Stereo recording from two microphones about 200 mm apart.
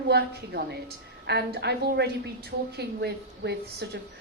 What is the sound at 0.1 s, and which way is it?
A woman's voice, 55° right (ahead or behind).